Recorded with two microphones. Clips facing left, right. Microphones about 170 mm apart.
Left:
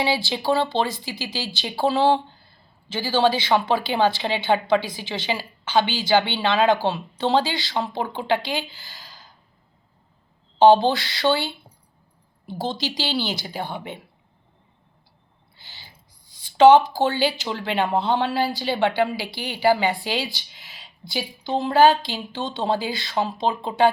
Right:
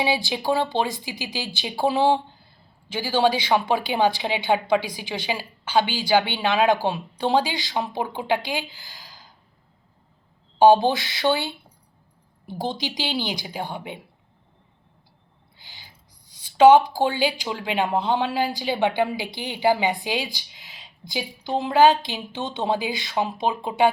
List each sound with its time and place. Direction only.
0.0 s a woman's voice: 15° right (ahead or behind)
10.6 s a woman's voice: 15° right (ahead or behind)
15.5 s a sound: 10° right (ahead or behind)
16.3 s a woman's voice: 10° right (ahead or behind)